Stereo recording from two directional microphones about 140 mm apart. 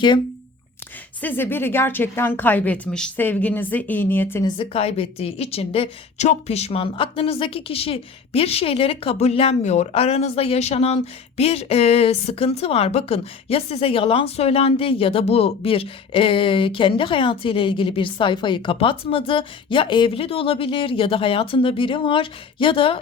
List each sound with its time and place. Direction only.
1.2 s a woman's voice: 15° left (ahead or behind)
4.4 s a woman's voice: 35° left (ahead or behind)